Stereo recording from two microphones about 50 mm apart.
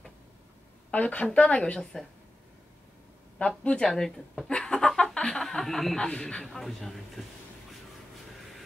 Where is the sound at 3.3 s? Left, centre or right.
Left.